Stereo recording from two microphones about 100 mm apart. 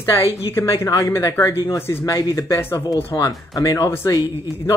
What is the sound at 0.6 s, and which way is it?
Speech, 25° left (ahead or behind).